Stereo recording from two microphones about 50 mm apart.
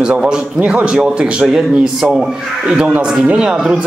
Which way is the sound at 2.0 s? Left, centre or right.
Centre.